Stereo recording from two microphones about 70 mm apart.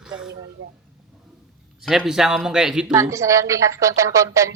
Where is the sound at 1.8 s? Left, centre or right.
Centre.